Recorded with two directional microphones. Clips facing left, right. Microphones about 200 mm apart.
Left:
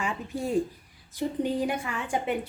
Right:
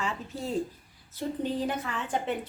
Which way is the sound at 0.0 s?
15° left (ahead or behind).